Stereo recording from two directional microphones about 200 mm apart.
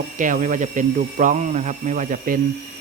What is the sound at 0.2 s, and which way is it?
Speech, 40° right (ahead or behind).